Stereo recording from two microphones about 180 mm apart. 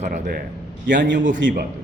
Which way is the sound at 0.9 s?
75° right (ahead or behind).